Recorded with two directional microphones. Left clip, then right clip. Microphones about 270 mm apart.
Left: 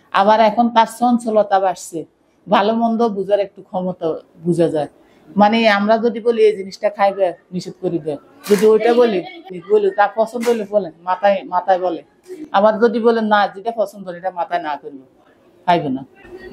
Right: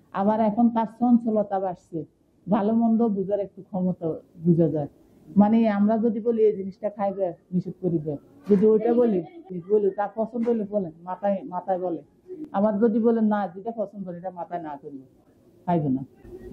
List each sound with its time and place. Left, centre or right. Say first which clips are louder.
0.1 s a woman's voice: left 12 dB; centre
3.7 s speech: left 8 dB; left
4.0 s speech: left 8 dB; centre